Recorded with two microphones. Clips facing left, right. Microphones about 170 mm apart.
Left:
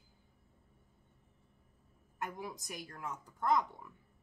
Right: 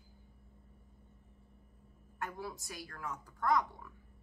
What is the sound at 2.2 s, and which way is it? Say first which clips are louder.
A woman's voice: even; 15° left (ahead or behind).